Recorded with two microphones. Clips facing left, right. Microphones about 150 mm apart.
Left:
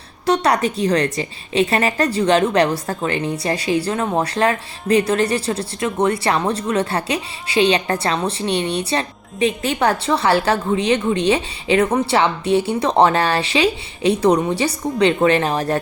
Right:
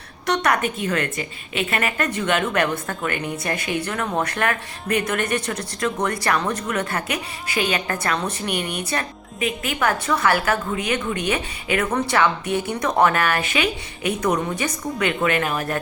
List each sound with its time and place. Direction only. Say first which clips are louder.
0.3 s a woman's voice: left 4 dB; 35° left (ahead or behind)